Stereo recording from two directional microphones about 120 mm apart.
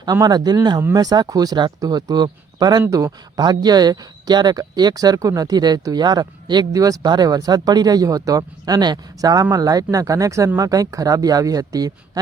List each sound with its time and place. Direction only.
0.0 s speech: 35° right (ahead or behind)